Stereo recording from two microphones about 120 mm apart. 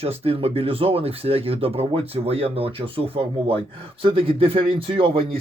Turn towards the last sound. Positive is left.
turn(degrees=-50)  # may be behind; listen again after turning